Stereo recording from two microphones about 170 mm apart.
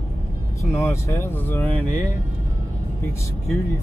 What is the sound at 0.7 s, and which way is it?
Speech, 15° left (ahead or behind).